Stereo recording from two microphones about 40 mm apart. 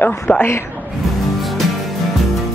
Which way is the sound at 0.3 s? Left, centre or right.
Left.